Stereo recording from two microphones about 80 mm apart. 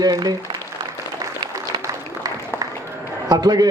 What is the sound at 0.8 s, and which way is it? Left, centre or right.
Applause, right.